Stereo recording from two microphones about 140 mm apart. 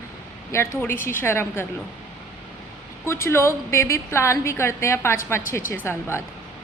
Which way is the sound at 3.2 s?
20° left (ahead or behind).